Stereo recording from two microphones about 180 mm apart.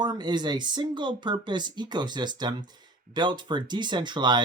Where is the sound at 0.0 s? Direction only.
25° right (ahead or behind).